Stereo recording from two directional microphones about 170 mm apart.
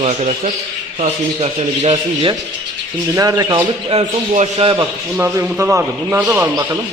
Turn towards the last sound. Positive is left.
turn(degrees=-5)  # may be behind; listen again after turning